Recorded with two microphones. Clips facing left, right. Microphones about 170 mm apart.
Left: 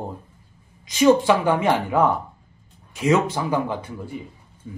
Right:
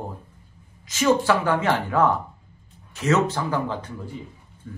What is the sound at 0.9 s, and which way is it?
Speech, 15° left (ahead or behind).